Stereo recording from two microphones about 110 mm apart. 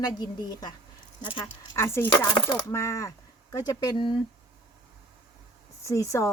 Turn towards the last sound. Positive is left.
turn(degrees=30)  # may be behind; listen again after turning